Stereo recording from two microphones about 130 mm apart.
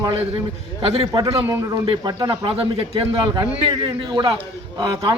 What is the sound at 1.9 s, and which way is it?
A man's voice, 35° right (ahead or behind).